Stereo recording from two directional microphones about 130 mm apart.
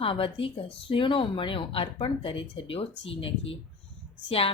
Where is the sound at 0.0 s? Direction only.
45° left (ahead or behind).